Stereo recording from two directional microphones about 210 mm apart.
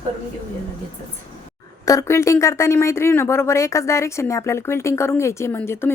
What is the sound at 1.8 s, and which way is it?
Speech, 15° left (ahead or behind).